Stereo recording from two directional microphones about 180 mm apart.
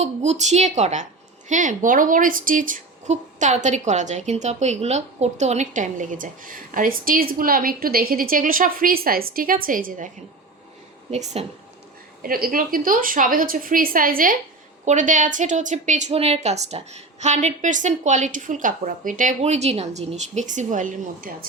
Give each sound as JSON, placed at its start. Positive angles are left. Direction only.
{"t": 0.0, "sound": "a woman's voice", "side_deg": -40}
{"t": 11.1, "sound": "a woman's voice", "side_deg": -40}
{"t": 12.2, "sound": "a woman's voice", "side_deg": -55}